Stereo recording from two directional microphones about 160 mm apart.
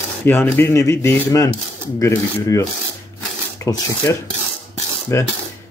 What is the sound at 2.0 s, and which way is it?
Rub, 20° left (ahead or behind).